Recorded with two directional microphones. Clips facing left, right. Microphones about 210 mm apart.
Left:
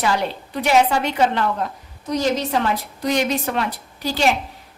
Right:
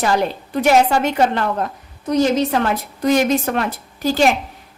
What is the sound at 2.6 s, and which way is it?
A woman's voice, 50° right (ahead or behind).